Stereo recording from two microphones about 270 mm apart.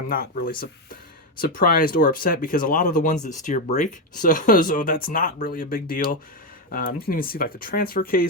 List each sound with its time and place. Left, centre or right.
0.1 s speech: left